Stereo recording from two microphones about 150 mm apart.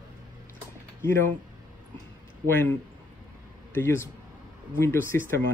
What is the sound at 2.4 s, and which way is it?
Speech, 10° left (ahead or behind).